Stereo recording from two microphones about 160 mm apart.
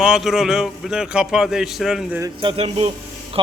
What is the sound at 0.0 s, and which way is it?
A man's voice, 5° right (ahead or behind).